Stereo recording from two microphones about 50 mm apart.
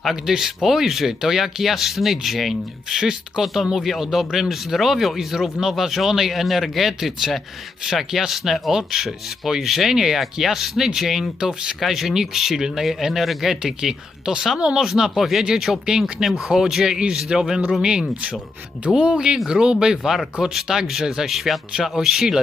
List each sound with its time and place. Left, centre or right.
0.0 s speech: centre
2.9 s speech: centre
19.0 s speech: centre
21.2 s speech: centre